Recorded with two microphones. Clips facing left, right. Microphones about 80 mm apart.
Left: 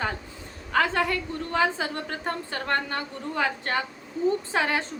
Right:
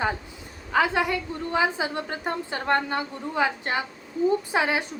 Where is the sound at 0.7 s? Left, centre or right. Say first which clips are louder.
Right 1 dB; centre.